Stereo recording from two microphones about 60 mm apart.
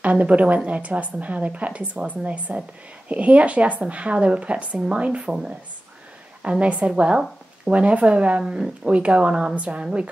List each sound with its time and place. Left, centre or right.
0.0 s a woman's voice: right
6.6 s a woman's voice: right